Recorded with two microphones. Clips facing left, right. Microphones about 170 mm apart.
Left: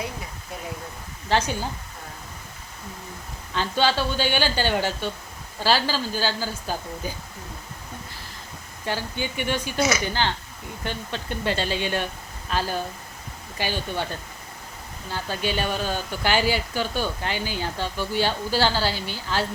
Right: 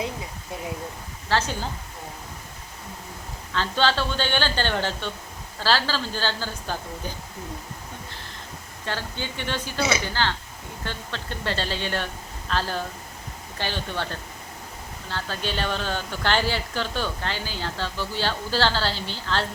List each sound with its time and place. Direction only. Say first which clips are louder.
1.3 s speech: left 2 dB; 15° left (ahead or behind)
3.5 s speech: left 1 dB; 15° left (ahead or behind)
8.8 s speech: left 3 dB; 15° left (ahead or behind)